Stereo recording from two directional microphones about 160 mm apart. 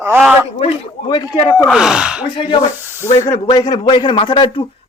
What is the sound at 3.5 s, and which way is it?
A man's voice, 25° left (ahead or behind).